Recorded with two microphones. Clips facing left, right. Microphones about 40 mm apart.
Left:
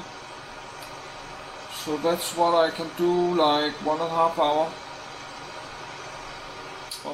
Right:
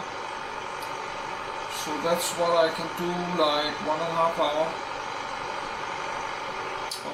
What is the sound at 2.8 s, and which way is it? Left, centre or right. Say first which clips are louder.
Speech: left 6 dB; right.